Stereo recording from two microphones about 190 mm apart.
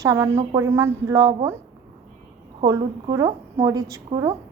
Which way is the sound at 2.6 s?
20° right (ahead or behind).